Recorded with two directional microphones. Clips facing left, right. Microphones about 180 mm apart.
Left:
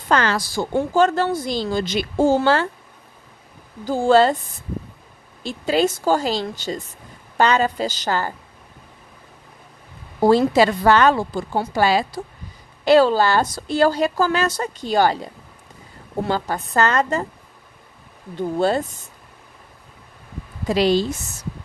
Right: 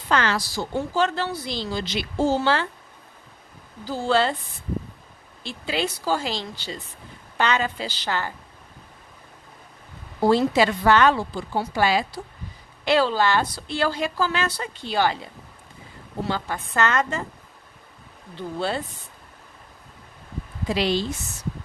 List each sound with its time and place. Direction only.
0.1 s speech: 40° left (ahead or behind)
3.8 s speech: 50° left (ahead or behind)
5.4 s a woman's voice: 45° left (ahead or behind)
10.2 s a woman's voice: 40° left (ahead or behind)
18.3 s speech: 45° left (ahead or behind)
20.6 s a woman's voice: 40° left (ahead or behind)